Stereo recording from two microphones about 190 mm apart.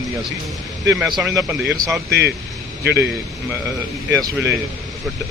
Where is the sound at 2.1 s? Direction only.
60° right (ahead or behind).